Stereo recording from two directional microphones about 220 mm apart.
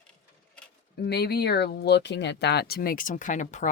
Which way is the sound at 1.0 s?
50° left (ahead or behind).